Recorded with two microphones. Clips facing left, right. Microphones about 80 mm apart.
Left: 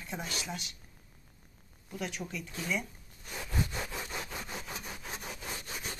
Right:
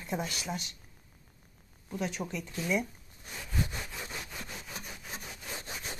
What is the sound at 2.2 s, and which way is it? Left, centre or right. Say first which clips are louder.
Speech: right 3 dB; right.